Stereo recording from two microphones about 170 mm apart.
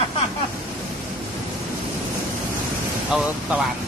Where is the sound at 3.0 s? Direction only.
Centre (ahead or behind).